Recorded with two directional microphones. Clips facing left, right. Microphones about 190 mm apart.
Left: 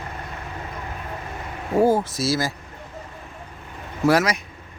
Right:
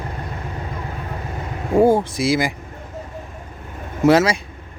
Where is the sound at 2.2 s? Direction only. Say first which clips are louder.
Right 4 dB; 15° right (ahead or behind).